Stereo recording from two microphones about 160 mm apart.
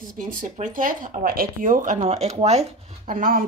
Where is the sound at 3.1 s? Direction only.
60° right (ahead or behind).